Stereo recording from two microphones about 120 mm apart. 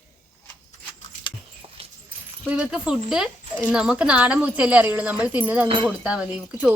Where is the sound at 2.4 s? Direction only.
10° right (ahead or behind).